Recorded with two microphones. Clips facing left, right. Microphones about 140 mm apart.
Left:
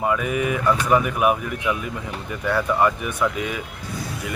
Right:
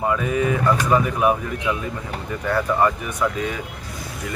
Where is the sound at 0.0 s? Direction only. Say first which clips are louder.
Right 1 dB; 15° left (ahead or behind).